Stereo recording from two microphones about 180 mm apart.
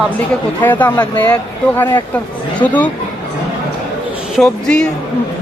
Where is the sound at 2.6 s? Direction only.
10° left (ahead or behind).